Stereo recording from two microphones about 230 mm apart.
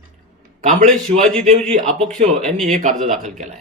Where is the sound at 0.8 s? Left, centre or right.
Centre.